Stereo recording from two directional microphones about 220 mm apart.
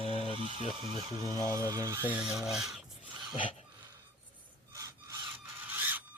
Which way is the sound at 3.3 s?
20° left (ahead or behind).